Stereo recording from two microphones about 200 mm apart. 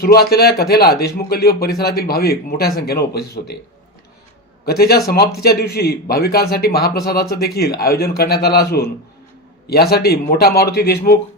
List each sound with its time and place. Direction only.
0.0 s a man's voice: 50° left (ahead or behind)
4.6 s a man's voice: 50° left (ahead or behind)